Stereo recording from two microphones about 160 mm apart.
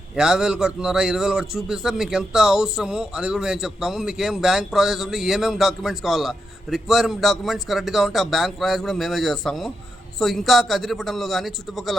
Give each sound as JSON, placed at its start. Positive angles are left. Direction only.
{"t": 0.2, "sound": "a man's voice", "side_deg": -5}